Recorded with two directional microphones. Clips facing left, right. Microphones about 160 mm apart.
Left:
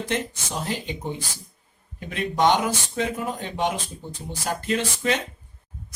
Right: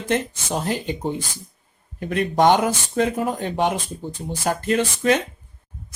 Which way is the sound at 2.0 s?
50° right (ahead or behind).